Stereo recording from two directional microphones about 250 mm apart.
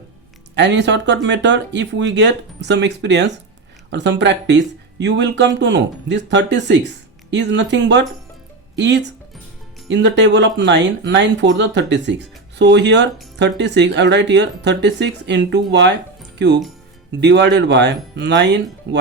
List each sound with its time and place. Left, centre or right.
0.5 s speech: right
17.2 s speech: right